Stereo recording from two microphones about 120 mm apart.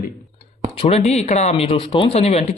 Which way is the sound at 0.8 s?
60° left (ahead or behind).